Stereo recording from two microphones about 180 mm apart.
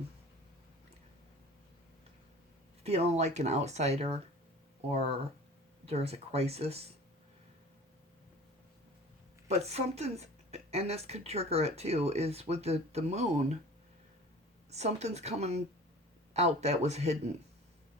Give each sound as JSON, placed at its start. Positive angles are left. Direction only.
{"t": 2.8, "sound": "speech", "side_deg": -35}
{"t": 9.5, "sound": "speech", "side_deg": -35}
{"t": 14.7, "sound": "speech", "side_deg": -35}